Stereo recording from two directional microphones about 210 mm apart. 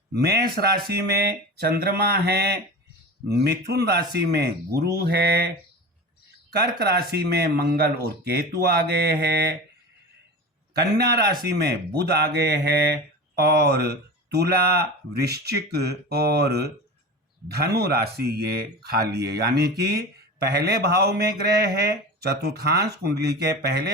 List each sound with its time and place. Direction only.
0.2 s speech: 50° right (ahead or behind)
6.5 s speech: 50° right (ahead or behind)
10.8 s speech: 50° right (ahead or behind)
22.2 s speech: 50° right (ahead or behind)